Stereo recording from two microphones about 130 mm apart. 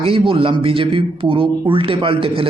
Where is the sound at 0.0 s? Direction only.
45° right (ahead or behind).